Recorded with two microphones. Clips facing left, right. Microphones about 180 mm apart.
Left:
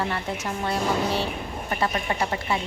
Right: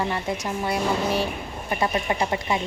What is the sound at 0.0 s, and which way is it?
A woman's voice, 15° right (ahead or behind).